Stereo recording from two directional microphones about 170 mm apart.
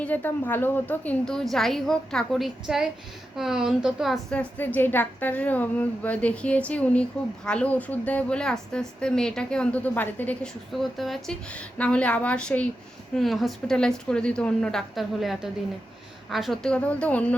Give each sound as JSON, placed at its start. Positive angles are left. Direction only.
{"t": 0.0, "sound": "a woman's voice", "side_deg": 10}